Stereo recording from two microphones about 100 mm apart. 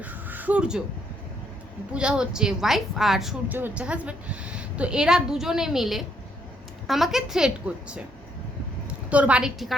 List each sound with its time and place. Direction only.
0.0 s crow: 15° right (ahead or behind)
1.9 s a woman's voice: 10° right (ahead or behind)
3.5 s a woman's voice: 15° right (ahead or behind)
9.0 s a woman's voice: 10° right (ahead or behind)